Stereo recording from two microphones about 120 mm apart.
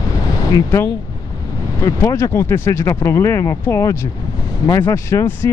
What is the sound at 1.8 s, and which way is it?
Speech, 25° left (ahead or behind).